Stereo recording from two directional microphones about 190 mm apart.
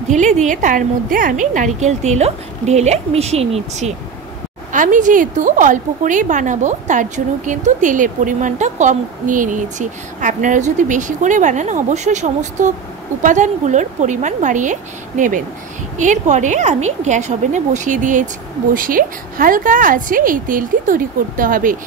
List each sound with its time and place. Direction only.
0.1 s a woman's voice: 40° right (ahead or behind)